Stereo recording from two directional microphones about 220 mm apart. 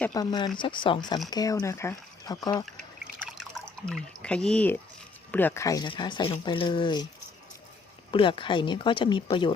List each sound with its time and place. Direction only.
0.0 s speech: 15° left (ahead or behind)
3.2 s drip: centre (ahead or behind)
5.3 s speech: 10° left (ahead or behind)
8.1 s speech: 20° left (ahead or behind)